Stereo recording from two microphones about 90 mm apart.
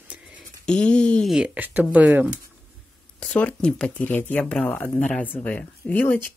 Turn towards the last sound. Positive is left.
turn(degrees=20)  # may be behind; listen again after turning